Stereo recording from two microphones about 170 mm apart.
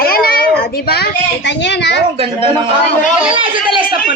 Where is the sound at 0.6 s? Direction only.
65° left (ahead or behind).